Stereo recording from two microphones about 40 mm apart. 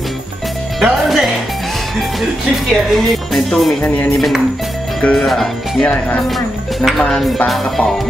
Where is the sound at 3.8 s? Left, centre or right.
Left.